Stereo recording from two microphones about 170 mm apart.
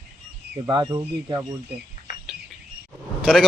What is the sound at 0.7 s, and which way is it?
Speech, 25° right (ahead or behind).